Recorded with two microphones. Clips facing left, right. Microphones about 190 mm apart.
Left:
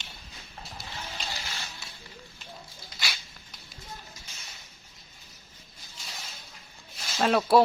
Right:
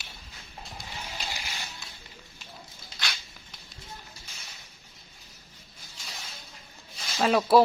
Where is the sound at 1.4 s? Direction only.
15° right (ahead or behind).